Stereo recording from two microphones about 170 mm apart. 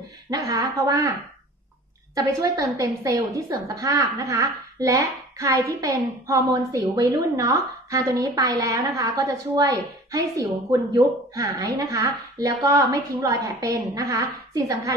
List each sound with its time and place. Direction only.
0.3 s a woman's voice: 20° right (ahead or behind)
2.1 s a woman's voice: 20° right (ahead or behind)